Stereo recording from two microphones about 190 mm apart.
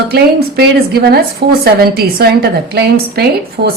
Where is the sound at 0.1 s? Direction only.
55° right (ahead or behind).